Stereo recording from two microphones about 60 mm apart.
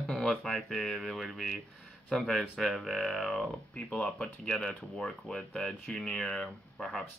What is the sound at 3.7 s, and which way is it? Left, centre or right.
Speech, centre.